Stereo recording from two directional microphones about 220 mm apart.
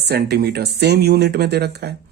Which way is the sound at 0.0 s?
45° right (ahead or behind).